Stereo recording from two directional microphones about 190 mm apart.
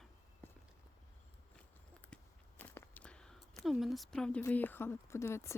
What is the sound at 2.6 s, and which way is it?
Speech, 10° left (ahead or behind).